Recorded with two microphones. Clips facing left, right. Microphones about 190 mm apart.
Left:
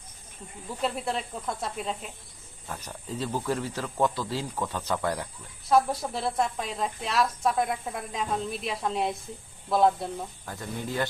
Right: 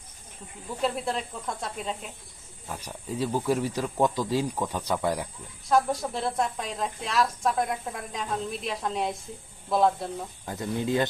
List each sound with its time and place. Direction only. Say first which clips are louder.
0.8 s speech: right 1 dB; centre (ahead or behind)
2.6 s speech: right 2 dB; 10° right (ahead or behind)
5.6 s speech: left 1 dB; centre (ahead or behind)
10.4 s speech: right 6 dB; 20° right (ahead or behind)